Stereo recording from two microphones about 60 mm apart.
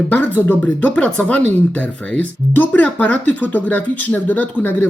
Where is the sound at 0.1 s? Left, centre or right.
Left.